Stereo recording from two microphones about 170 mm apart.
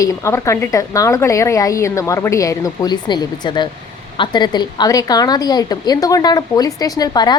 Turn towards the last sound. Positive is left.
turn(degrees=25)  # may be behind; listen again after turning